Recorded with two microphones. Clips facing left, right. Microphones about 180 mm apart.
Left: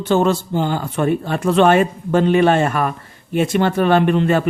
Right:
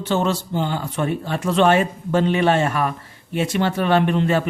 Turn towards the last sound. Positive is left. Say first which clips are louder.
# left 3 dB
turn(degrees=50)  # may be behind; listen again after turning